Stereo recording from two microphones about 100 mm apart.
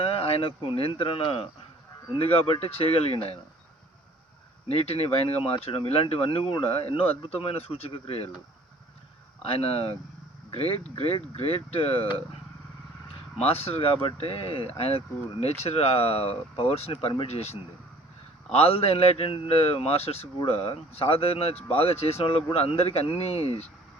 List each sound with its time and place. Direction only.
0.0 s speech: 75° left (ahead or behind)
4.7 s speech: 85° left
9.4 s speech: 75° left (ahead or behind)
13.3 s a man's voice: 85° left
17.0 s speech: 75° left (ahead or behind)
18.5 s a man's voice: 80° left